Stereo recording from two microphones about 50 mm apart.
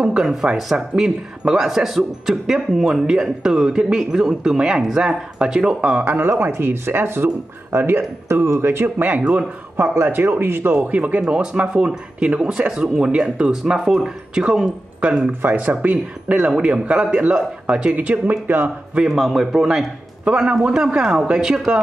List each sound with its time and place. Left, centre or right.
0.0 s a man's voice: centre
6.0 s speech: right
8.8 s speech: right
10.9 s speech: right
15.4 s speech: right; by 17.9 s centre
17.9 s speech: right
18.3 s speech: right
19.0 s a man's voice: centre
20.2 s a man's voice: right; by 21.7 s centre